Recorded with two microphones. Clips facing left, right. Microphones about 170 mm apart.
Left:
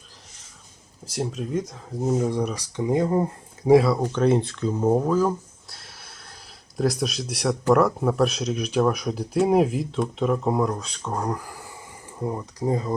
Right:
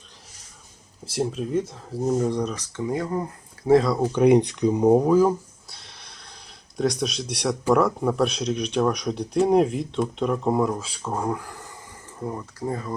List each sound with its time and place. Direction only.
1.2 s speech: centre (ahead or behind)
2.8 s speech: 20° left (ahead or behind)
3.7 s speech: 10° left (ahead or behind)
3.9 s speech: 10° right (ahead or behind)
5.6 s a sound: centre (ahead or behind)
6.7 s speech: 5° left (ahead or behind); by 12.9 s 20° left (ahead or behind)